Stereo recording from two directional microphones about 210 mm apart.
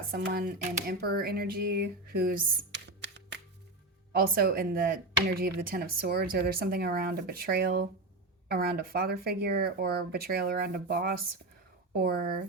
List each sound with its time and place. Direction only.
0.1 s speech: 45° right (ahead or behind)
4.1 s speech: 45° right (ahead or behind)